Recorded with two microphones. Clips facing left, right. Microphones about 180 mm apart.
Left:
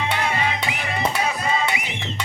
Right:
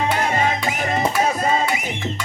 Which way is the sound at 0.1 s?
45° right (ahead or behind).